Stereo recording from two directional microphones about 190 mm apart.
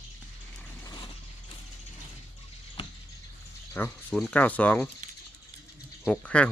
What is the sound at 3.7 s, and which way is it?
Speech, 5° left (ahead or behind).